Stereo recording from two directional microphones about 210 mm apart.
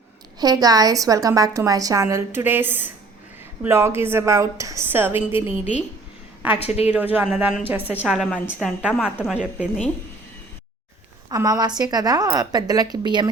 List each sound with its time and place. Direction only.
0.3 s a woman's voice: 20° right (ahead or behind)
6.5 s a woman's voice: 30° left (ahead or behind)
6.9 s a woman's voice: 10° right (ahead or behind)
11.3 s a woman's voice: 20° right (ahead or behind)